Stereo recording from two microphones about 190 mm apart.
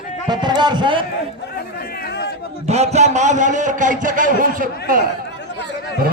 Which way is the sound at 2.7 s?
35° right (ahead or behind).